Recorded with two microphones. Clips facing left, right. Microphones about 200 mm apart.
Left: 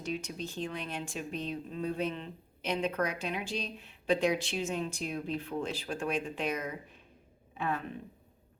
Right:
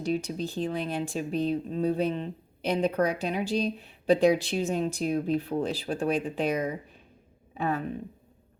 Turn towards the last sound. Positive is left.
turn(degrees=-40)  # may be behind; listen again after turning